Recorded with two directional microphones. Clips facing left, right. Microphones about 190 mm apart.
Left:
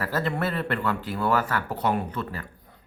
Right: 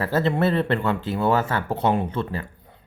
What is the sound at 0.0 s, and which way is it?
Speech, 25° right (ahead or behind).